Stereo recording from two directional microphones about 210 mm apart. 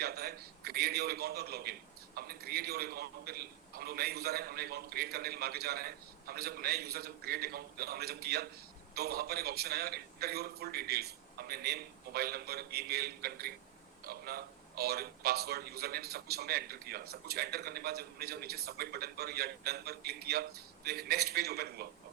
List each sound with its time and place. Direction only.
0.0 s a man's voice: 50° right (ahead or behind)